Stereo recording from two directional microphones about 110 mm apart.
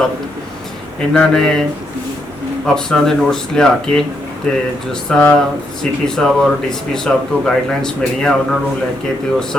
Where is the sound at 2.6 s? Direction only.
5° left (ahead or behind).